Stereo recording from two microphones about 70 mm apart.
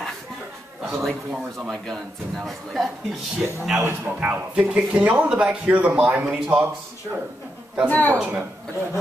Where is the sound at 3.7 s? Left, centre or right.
Right.